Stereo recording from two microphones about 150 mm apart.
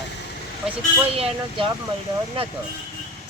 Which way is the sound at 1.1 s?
40° right (ahead or behind).